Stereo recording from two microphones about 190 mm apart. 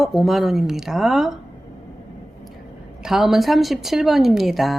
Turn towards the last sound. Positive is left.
turn(degrees=0)  # may be behind; listen again after turning